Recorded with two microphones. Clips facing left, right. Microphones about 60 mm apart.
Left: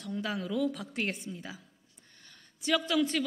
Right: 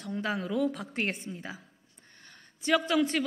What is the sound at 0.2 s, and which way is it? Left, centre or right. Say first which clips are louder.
A woman's voice: right 2 dB; right.